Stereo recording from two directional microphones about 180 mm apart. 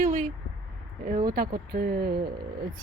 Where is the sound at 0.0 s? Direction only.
45° right (ahead or behind).